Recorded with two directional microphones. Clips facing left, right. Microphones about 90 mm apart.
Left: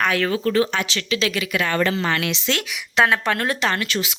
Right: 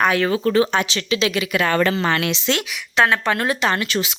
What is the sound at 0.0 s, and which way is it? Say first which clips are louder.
Speech: right 3 dB; 20° right (ahead or behind).